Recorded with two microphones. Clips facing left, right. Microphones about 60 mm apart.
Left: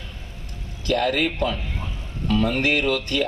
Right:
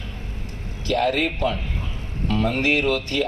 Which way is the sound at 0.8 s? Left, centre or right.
Left.